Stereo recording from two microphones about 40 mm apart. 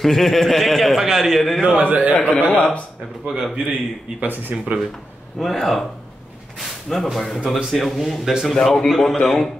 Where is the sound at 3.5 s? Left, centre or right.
Right.